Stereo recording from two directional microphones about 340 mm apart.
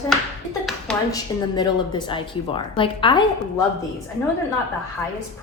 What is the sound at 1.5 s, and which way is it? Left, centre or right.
A woman's voice, centre.